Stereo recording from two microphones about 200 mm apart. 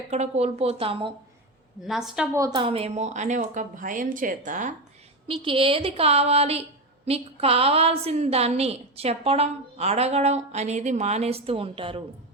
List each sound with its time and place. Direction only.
0.1 s a woman's voice: 35° right (ahead or behind)
1.8 s a woman's voice: centre (ahead or behind); by 4.7 s 40° right (ahead or behind)
5.3 s a woman's voice: 25° right (ahead or behind)